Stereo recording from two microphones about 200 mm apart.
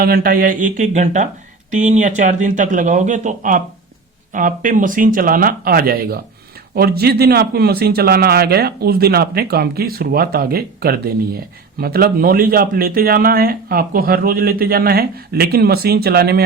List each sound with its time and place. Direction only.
0.0 s a man's voice: 45° right (ahead or behind)